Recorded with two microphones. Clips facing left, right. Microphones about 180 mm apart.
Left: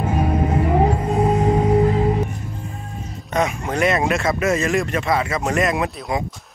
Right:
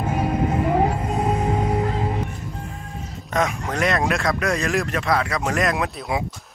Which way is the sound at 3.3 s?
Centre (ahead or behind).